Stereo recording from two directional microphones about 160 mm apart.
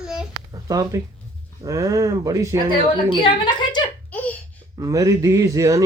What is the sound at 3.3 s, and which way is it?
Speech, 30° left (ahead or behind).